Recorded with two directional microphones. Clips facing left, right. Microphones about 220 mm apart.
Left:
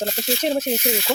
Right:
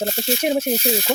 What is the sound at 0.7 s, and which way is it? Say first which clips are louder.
Speech: right 2 dB; 30° right (ahead or behind).